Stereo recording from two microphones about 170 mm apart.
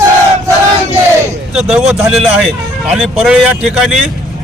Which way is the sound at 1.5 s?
5° right (ahead or behind).